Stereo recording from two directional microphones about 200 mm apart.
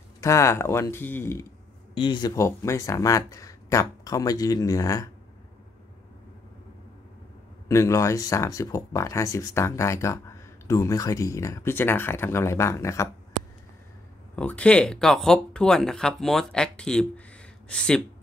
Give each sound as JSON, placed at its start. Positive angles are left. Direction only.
{"t": 0.2, "sound": "speech", "side_deg": 15}
{"t": 2.0, "sound": "speech", "side_deg": 20}
{"t": 7.6, "sound": "speech", "side_deg": 15}
{"t": 14.3, "sound": "speech", "side_deg": 5}